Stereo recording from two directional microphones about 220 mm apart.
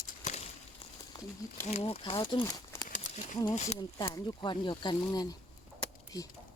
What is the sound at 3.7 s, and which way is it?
Speech, 20° left (ahead or behind).